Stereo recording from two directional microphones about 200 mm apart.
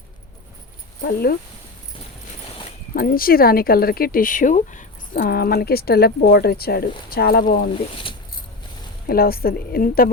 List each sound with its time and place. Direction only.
1.0 s speech: 50° left (ahead or behind)
2.9 s speech: 45° left (ahead or behind)
9.0 s speech: 50° left (ahead or behind)